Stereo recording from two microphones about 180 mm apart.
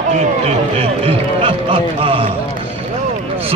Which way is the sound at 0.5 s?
35° right (ahead or behind).